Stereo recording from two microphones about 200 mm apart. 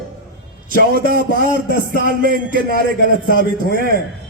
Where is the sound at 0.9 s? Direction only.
50° right (ahead or behind).